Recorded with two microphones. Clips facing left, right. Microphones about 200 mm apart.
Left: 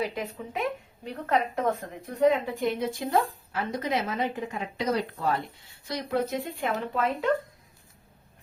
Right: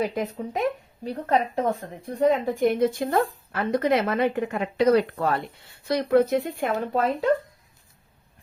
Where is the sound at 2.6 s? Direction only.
50° right (ahead or behind).